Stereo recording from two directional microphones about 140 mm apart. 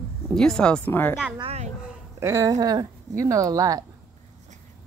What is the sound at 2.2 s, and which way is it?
Speech, 20° right (ahead or behind).